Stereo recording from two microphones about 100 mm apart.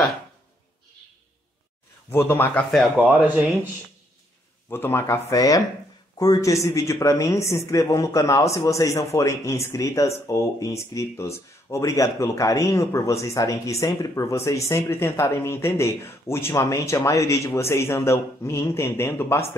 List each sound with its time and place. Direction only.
2.0 s speech: 20° left (ahead or behind)
3.0 s speech: 15° right (ahead or behind)
4.6 s speech: 20° left (ahead or behind)
5.3 s speech: 35° left (ahead or behind)